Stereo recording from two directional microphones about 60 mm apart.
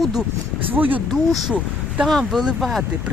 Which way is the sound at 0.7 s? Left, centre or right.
Right.